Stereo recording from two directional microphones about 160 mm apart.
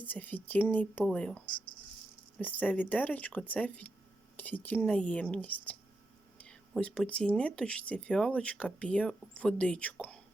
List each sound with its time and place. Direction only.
0.0 s speech: 10° left (ahead or behind)
2.4 s speech: 10° left (ahead or behind)